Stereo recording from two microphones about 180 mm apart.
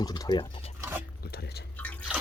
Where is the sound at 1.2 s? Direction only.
60° left (ahead or behind).